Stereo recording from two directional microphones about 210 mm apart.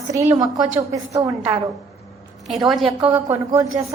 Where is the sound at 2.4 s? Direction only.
Centre (ahead or behind).